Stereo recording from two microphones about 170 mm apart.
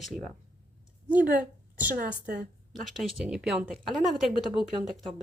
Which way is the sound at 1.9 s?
55° right (ahead or behind).